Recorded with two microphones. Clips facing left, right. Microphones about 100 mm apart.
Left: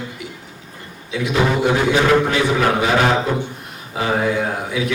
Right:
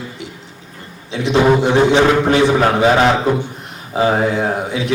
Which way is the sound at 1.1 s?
30° right (ahead or behind).